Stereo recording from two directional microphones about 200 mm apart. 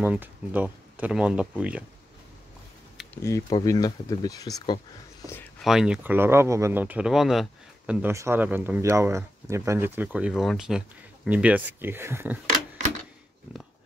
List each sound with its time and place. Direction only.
0.0 s speech: 10° right (ahead or behind)
3.2 s speech: 15° left (ahead or behind)
5.2 s a sound: 10° left (ahead or behind)
5.6 s speech: centre (ahead or behind)
13.5 s dog: 5° right (ahead or behind)